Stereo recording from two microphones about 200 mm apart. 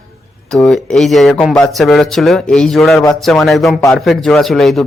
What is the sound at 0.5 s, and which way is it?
Speech, centre (ahead or behind).